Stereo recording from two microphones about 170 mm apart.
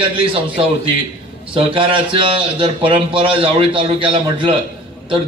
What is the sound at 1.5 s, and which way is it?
A man's voice, 30° right (ahead or behind).